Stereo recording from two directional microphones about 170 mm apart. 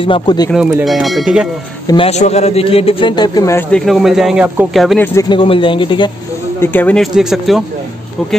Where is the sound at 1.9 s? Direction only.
35° left (ahead or behind); by 3.7 s 20° left (ahead or behind).